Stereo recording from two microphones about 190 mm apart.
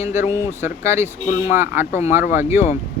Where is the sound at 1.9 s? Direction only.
35° left (ahead or behind).